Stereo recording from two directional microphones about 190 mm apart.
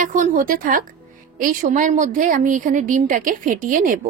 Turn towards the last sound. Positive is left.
turn(degrees=-45)  # may be behind; listen again after turning